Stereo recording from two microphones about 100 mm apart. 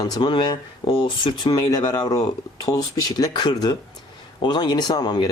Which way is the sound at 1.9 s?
40° left (ahead or behind).